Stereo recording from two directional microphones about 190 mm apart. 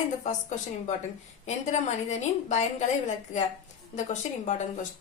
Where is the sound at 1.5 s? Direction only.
35° left (ahead or behind).